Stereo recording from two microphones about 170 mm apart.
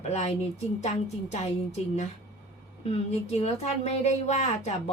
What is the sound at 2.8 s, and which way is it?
A woman's voice, 35° left (ahead or behind).